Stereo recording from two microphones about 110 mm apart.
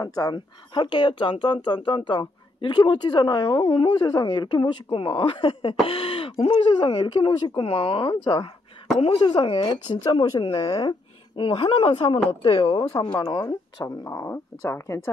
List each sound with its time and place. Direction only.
0.0 s speech: 35° left (ahead or behind)
0.7 s speech: 45° left (ahead or behind)
12.9 s speech: 40° left (ahead or behind); by 15.0 s 25° left (ahead or behind)